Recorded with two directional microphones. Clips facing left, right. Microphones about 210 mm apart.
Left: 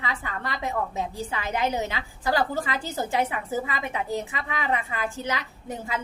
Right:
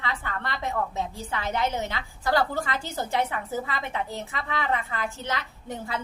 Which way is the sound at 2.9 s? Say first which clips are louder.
Left 1 dB; 15° left (ahead or behind).